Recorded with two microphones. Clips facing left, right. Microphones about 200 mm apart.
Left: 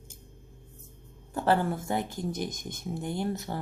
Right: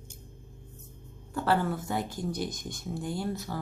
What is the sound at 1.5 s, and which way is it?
Speech, 20° left (ahead or behind).